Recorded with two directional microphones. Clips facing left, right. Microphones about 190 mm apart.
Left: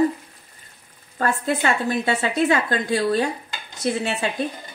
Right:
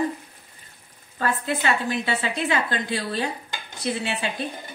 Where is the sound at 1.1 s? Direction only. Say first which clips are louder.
Left 3 dB; 45° left (ahead or behind).